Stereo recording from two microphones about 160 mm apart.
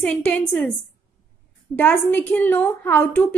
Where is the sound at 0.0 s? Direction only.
10° left (ahead or behind).